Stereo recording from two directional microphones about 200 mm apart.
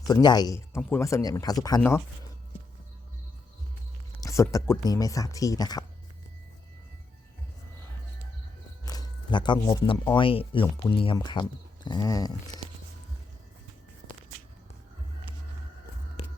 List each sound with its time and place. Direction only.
0.1 s speech: 20° left (ahead or behind)
4.2 s speech: 15° left (ahead or behind)
8.8 s a sound: 20° left (ahead or behind)
10.2 s speech: 25° left (ahead or behind)